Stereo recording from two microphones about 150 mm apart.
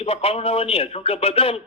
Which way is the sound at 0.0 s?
40° left (ahead or behind).